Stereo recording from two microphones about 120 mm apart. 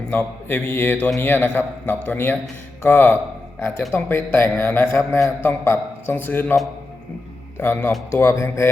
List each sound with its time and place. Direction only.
0.1 s a man's voice: 15° left (ahead or behind)
7.6 s speech: 20° left (ahead or behind)